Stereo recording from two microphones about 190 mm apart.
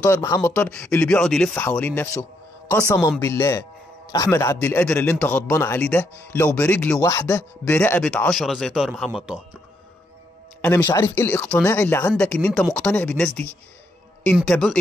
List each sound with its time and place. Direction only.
0.0 s a man's voice: 15° left (ahead or behind)
3.2 s a man's voice: 15° left (ahead or behind); by 9.4 s centre (ahead or behind)
10.6 s a man's voice: 10° left (ahead or behind)